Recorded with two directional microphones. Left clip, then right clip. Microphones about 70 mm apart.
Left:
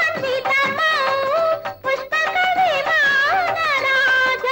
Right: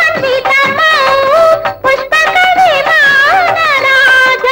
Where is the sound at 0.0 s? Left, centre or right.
Left.